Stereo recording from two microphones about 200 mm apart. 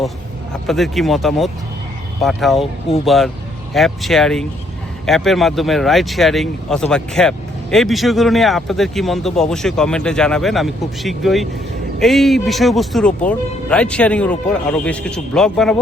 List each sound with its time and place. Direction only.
0.7 s speech: centre (ahead or behind)